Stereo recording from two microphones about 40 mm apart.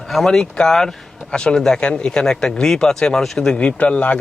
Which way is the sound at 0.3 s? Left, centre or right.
Centre.